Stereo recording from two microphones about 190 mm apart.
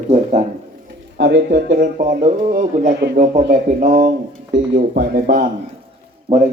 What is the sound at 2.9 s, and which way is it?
Speech, 55° right (ahead or behind).